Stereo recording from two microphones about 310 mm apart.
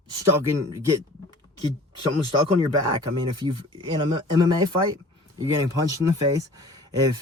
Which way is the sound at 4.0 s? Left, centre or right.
Centre.